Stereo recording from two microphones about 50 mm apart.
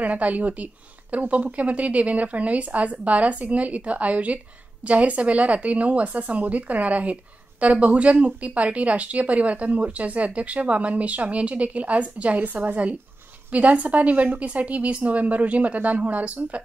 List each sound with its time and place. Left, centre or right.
0.0 s a woman's voice: right